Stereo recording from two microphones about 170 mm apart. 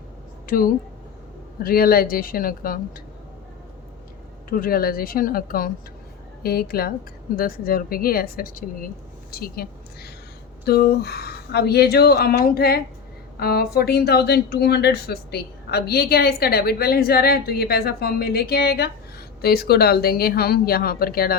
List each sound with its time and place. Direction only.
0.4 s speech: 55° left (ahead or behind)
4.4 s a woman's voice: 55° left (ahead or behind)